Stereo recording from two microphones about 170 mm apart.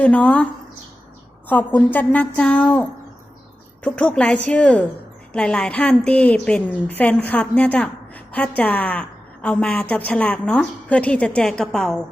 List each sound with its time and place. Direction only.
0.0 s a woman's voice: 5° left (ahead or behind)
1.5 s a woman's voice: 10° left (ahead or behind)
3.8 s a woman's voice: 5° left (ahead or behind)